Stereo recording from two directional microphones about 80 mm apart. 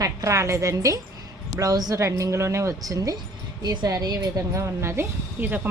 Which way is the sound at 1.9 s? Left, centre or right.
Right.